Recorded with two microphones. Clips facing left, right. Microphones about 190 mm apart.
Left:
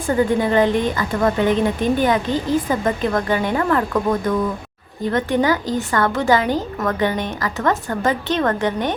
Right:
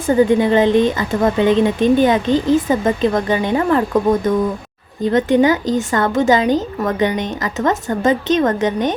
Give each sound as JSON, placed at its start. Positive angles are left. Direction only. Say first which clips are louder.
{"t": 0.1, "sound": "a woman's voice", "louder": "right 4 dB", "side_deg": -20}